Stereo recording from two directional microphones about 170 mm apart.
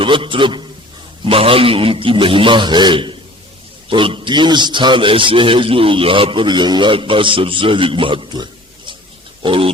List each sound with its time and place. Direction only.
0.0 s a man's voice: 30° right (ahead or behind)